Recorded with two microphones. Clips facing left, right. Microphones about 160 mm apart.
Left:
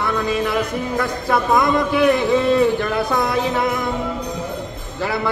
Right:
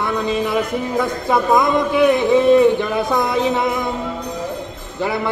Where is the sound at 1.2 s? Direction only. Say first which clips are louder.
Right 1 dB; 20° right (ahead or behind).